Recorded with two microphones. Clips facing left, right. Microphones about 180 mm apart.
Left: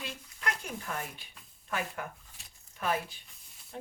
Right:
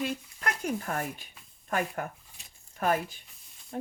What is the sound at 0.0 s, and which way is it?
Speech, 45° right (ahead or behind).